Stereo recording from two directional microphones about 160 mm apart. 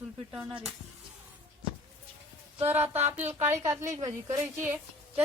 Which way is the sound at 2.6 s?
15° right (ahead or behind).